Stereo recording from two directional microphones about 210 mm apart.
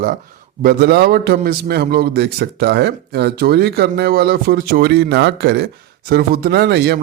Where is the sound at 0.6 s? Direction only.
50° right (ahead or behind).